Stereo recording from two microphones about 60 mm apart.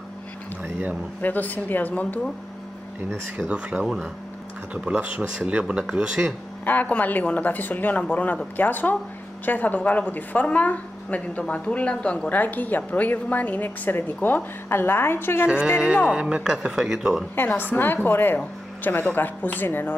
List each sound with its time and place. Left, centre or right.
1.2 s speech: left
3.3 s speech: right
4.9 s speech: right
6.6 s speech: left
16.1 s speech: centre
17.4 s speech: left
18.4 s speech: left